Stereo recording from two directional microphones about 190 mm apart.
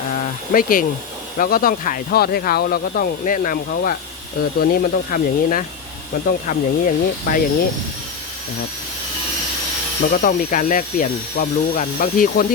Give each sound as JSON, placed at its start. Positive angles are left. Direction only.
{"t": 0.5, "sound": "speech", "side_deg": 50}
{"t": 10.1, "sound": "speech", "side_deg": 45}